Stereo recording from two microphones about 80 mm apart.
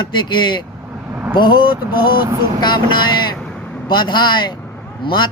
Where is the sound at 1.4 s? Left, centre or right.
Left.